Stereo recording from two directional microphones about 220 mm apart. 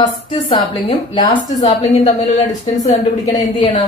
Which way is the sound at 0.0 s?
20° left (ahead or behind).